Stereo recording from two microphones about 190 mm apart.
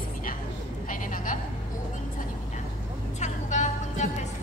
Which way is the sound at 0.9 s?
45° left (ahead or behind).